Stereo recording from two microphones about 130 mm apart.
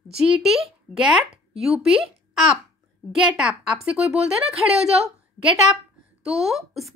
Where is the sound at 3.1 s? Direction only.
5° right (ahead or behind).